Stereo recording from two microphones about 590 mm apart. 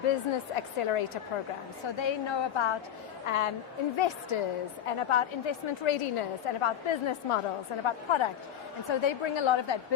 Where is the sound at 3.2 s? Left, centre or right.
Left.